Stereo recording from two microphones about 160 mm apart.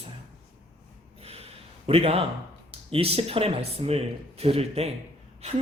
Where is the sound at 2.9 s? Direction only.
40° right (ahead or behind).